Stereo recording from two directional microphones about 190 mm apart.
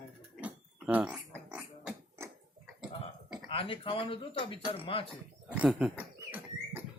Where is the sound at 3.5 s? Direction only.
30° left (ahead or behind).